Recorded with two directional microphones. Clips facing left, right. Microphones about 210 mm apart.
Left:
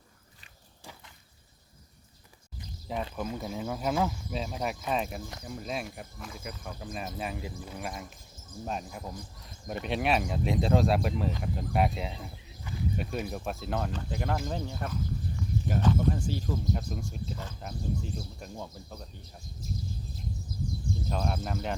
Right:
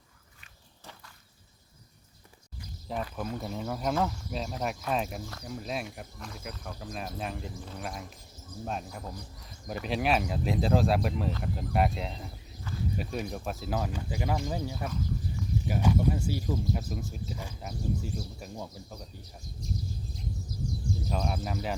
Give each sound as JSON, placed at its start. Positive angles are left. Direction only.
{"t": 3.2, "sound": "speech", "side_deg": 0}
{"t": 12.7, "sound": "a sound", "side_deg": 15}
{"t": 13.0, "sound": "speech", "side_deg": 0}
{"t": 15.4, "sound": "a sound", "side_deg": -10}
{"t": 16.7, "sound": "speech", "side_deg": -5}
{"t": 21.1, "sound": "speech", "side_deg": 0}